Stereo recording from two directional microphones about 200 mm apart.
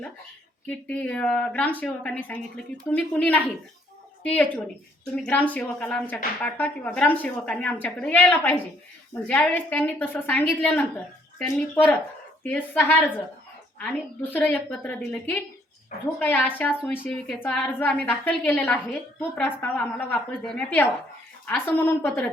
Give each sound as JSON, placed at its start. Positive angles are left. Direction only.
{"t": 0.7, "sound": "a woman's voice", "side_deg": 5}